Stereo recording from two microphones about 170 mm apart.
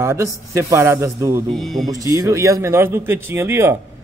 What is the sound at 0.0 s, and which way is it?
Speech, 15° right (ahead or behind).